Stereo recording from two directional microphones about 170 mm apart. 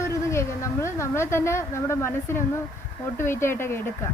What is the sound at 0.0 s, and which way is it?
A woman's voice, 15° left (ahead or behind).